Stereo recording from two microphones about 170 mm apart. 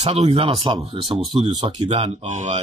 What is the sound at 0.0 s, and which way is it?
Speech, 35° right (ahead or behind).